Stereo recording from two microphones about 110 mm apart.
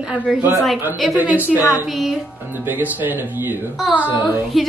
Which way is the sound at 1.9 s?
Centre (ahead or behind).